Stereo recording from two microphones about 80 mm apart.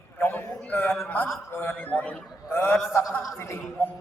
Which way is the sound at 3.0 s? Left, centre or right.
Centre.